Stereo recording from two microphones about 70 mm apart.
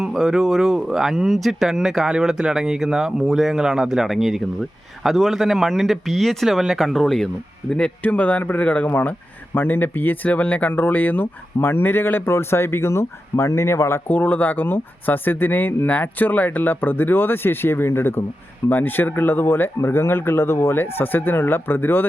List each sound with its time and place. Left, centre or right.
0.0 s a man's voice: centre; by 14.0 s left
14.1 s speech: left